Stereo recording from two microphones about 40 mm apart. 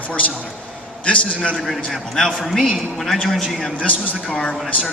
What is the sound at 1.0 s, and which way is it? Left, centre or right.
Speech, left.